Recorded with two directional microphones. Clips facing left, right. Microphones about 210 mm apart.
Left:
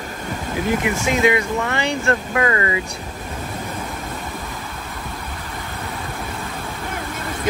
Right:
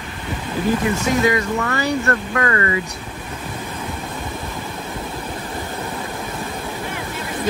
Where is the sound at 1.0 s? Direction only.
20° left (ahead or behind).